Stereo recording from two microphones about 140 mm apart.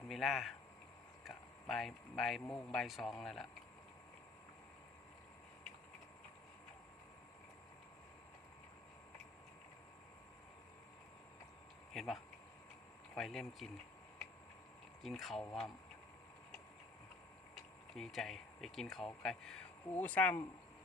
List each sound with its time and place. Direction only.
0.1 s a man's voice: centre (ahead or behind)
11.9 s speech: centre (ahead or behind)
15.0 s speech: centre (ahead or behind)
17.9 s speech: centre (ahead or behind)